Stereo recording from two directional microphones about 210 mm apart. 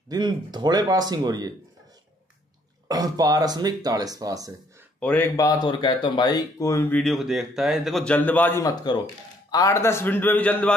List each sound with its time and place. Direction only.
0.1 s speech: 20° right (ahead or behind)
2.9 s speech: 15° right (ahead or behind)
5.0 s speech: 10° left (ahead or behind)
7.0 s a man's voice: centre (ahead or behind)